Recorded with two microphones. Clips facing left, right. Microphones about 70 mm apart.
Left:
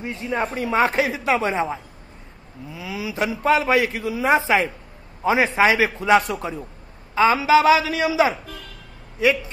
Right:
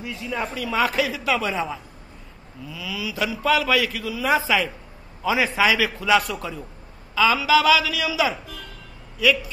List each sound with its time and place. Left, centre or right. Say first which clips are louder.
0.0 s a man's voice: left 4 dB; left